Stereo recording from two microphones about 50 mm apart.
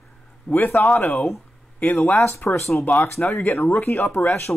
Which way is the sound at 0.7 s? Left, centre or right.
Centre.